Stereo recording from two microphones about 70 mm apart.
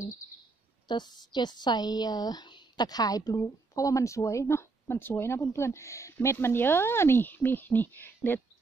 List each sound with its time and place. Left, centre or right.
0.8 s a woman's voice: left